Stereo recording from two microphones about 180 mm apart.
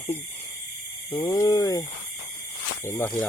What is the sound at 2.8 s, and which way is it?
Speech, 15° left (ahead or behind).